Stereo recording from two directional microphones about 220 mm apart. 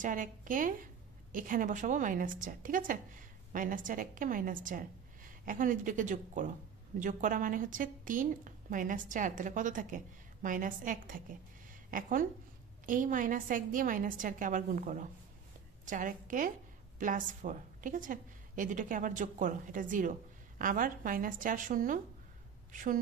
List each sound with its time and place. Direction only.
0.0 s a woman's voice: 35° right (ahead or behind)